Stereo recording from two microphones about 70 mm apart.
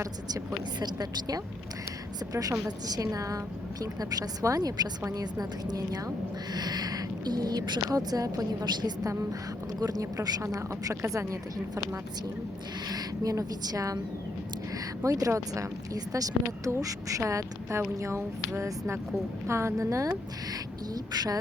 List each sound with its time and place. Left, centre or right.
0.3 s a woman's voice: right
9.8 s speech: right
12.9 s a woman's voice: right
15.0 s speech: right
20.1 s speech: right